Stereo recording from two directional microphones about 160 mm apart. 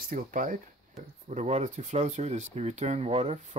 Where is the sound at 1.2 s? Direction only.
45° right (ahead or behind).